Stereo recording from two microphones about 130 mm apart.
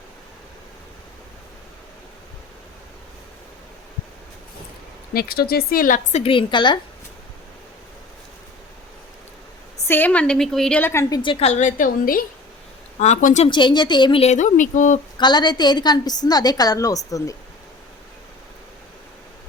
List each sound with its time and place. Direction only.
5.7 s a woman's voice: 90° left
6.2 s a woman's voice: 40° left (ahead or behind)
9.8 s a woman's voice: 15° left (ahead or behind)
11.1 s a woman's voice: 40° left (ahead or behind)
11.4 s a woman's voice: 70° left (ahead or behind); by 12.2 s 90° left
13.0 s speech: 65° left (ahead or behind)
13.5 s a woman's voice: 35° left (ahead or behind)
14.2 s speech: 65° left (ahead or behind)
15.2 s a woman's voice: 35° left (ahead or behind)